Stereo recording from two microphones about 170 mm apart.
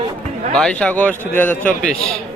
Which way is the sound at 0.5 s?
5° left (ahead or behind).